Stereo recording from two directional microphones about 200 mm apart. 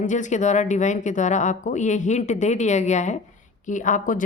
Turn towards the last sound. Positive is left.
turn(degrees=40)  # may be behind; listen again after turning